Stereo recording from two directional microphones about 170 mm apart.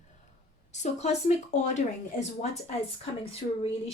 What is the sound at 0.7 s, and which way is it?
A woman's voice, 40° left (ahead or behind).